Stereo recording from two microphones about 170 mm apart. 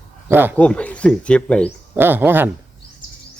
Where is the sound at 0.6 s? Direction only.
5° left (ahead or behind).